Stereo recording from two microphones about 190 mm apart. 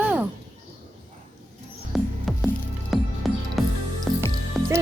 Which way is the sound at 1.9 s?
Centre (ahead or behind).